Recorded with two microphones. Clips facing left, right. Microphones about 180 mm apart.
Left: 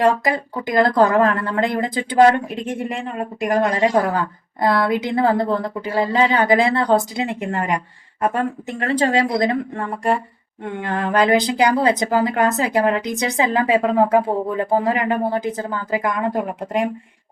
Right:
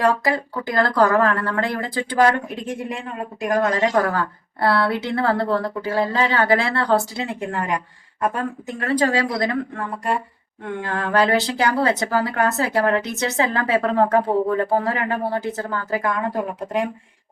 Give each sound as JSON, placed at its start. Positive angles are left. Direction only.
{"t": 0.0, "sound": "speech", "side_deg": 20}
{"t": 3.4, "sound": "a woman's voice", "side_deg": 20}
{"t": 10.8, "sound": "a woman's voice", "side_deg": 20}